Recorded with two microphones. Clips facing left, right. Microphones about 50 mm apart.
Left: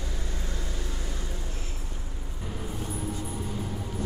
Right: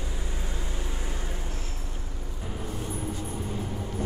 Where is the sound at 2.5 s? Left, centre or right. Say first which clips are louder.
Right 1 dB; centre.